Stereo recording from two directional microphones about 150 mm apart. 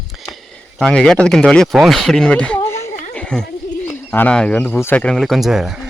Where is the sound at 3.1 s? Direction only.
5° left (ahead or behind).